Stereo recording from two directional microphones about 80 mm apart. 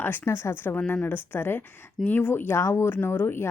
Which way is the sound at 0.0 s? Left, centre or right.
Left.